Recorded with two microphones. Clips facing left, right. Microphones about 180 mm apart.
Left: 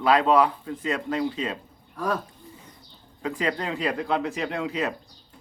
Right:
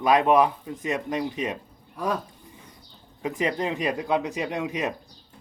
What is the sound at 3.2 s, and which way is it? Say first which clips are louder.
A man's voice: right 1 dB; 20° right (ahead or behind).